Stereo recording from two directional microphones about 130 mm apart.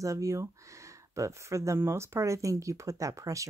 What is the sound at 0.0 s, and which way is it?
Speech, 25° right (ahead or behind).